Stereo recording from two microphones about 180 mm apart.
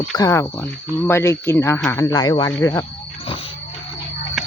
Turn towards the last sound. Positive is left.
turn(degrees=20)  # may be behind; listen again after turning